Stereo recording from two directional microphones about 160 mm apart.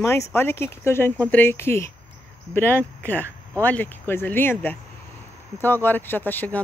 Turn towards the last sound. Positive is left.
turn(degrees=10)  # may be behind; listen again after turning